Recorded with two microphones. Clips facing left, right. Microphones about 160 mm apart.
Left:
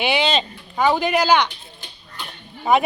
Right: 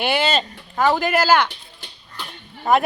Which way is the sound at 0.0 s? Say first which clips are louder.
Even; 5° right (ahead or behind).